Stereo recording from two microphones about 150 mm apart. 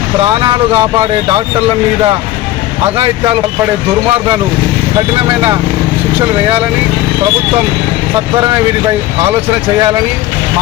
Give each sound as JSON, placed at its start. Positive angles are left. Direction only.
{"t": 0.4, "sound": "speech", "side_deg": -35}